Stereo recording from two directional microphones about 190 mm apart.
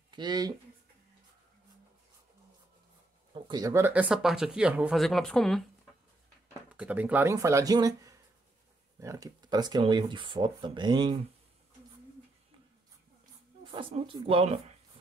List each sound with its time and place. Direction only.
0.1 s speech: 20° right (ahead or behind)
3.3 s speech: 25° right (ahead or behind); by 5.7 s centre (ahead or behind)
6.7 s speech: 5° right (ahead or behind); by 11.1 s 25° right (ahead or behind)
13.7 s speech: 25° right (ahead or behind)